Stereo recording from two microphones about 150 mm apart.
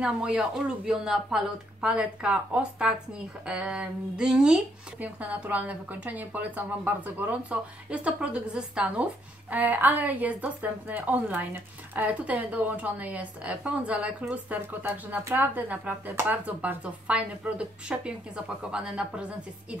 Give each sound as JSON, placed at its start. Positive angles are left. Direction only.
{"t": 0.0, "sound": "a woman's voice", "side_deg": -5}